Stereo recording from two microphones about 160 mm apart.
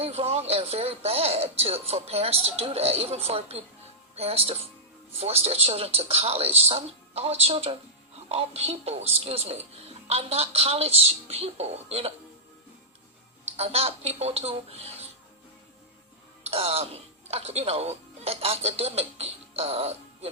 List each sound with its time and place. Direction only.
0.0 s speech: 40° right (ahead or behind)
13.6 s speech: 40° right (ahead or behind)
16.4 s speech: 40° right (ahead or behind)